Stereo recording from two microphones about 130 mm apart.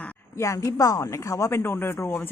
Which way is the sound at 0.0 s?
20° left (ahead or behind).